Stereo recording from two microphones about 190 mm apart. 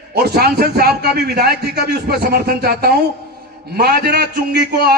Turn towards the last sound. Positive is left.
turn(degrees=-55)  # may be behind; listen again after turning